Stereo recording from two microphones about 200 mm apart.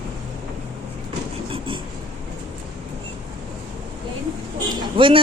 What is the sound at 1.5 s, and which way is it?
Train, 25° right (ahead or behind).